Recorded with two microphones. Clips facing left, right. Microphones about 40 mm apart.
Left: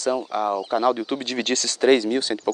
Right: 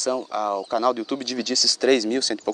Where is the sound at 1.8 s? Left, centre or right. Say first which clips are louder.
Left 2 dB; left.